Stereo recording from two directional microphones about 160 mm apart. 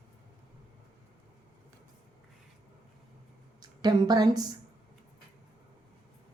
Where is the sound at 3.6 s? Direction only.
25° right (ahead or behind).